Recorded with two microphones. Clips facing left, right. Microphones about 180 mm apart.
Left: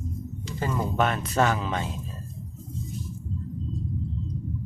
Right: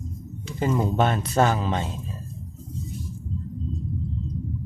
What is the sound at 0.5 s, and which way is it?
Speech, 20° right (ahead or behind).